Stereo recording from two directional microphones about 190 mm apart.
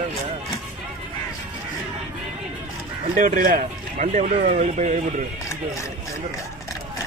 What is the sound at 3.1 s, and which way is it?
Speech, 45° right (ahead or behind).